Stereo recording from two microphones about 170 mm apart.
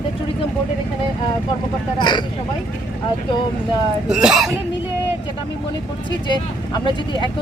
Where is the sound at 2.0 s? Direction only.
25° left (ahead or behind).